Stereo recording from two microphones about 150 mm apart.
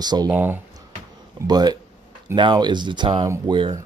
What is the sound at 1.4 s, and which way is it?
Speech, 25° right (ahead or behind).